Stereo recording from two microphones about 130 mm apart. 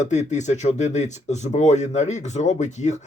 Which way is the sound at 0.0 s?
65° left (ahead or behind).